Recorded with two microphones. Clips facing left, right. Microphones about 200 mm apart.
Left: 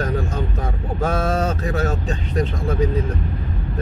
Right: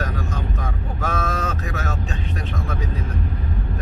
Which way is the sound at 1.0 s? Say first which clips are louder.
Left 5 dB; 35° left (ahead or behind).